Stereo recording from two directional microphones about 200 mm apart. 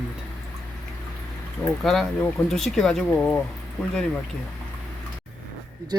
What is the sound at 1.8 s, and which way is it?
Speech, centre (ahead or behind).